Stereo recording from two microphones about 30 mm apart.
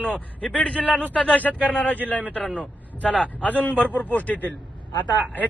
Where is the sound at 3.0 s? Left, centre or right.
Left.